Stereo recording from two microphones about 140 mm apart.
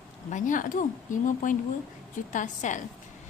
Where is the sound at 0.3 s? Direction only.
65° left (ahead or behind).